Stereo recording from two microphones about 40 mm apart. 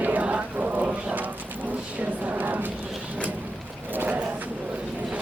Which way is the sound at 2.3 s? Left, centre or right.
Right.